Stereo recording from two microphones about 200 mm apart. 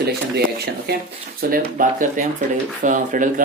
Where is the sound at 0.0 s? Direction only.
55° right (ahead or behind).